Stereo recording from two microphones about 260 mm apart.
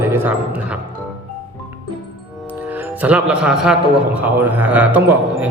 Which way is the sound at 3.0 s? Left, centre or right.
Centre.